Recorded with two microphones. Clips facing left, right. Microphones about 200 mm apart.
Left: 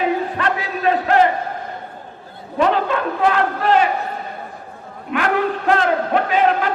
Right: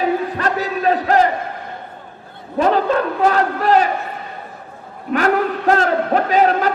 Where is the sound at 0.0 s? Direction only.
40° right (ahead or behind).